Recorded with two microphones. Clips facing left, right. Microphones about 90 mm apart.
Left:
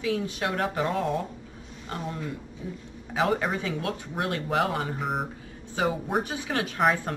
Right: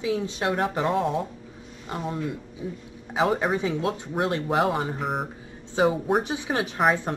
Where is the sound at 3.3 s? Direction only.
10° right (ahead or behind).